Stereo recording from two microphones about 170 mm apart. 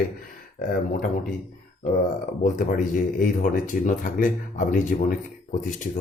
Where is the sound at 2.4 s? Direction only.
50° left (ahead or behind).